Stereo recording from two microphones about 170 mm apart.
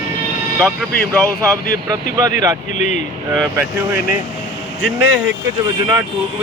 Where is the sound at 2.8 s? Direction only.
45° left (ahead or behind).